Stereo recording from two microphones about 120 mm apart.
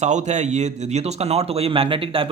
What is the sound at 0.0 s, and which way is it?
Speech, 75° right (ahead or behind).